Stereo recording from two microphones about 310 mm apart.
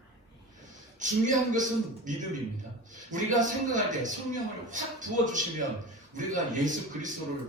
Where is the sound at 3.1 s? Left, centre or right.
Right.